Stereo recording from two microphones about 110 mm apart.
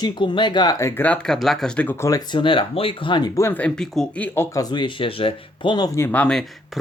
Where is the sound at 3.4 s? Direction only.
20° left (ahead or behind).